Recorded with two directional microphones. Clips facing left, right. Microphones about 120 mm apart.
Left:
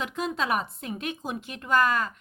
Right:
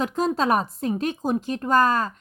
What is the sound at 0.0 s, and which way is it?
Speech, 35° right (ahead or behind).